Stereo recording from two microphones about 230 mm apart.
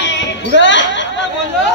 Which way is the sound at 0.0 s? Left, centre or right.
Left.